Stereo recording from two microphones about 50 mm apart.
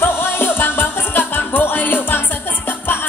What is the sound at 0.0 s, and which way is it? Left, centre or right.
Music, left.